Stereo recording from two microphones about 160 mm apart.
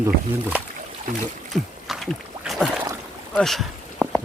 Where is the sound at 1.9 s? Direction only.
Centre (ahead or behind).